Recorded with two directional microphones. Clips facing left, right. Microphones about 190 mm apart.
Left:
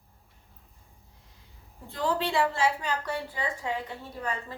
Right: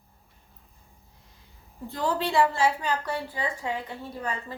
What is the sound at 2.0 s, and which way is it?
Speech, 40° right (ahead or behind).